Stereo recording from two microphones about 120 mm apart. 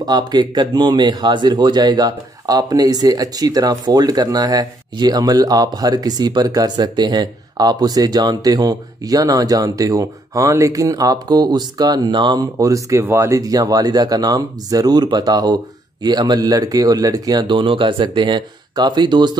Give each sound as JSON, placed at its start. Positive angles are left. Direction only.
{"t": 0.0, "sound": "speech", "side_deg": -35}